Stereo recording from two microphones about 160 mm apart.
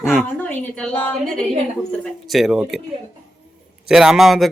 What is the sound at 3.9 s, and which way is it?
Speech, 5° right (ahead or behind).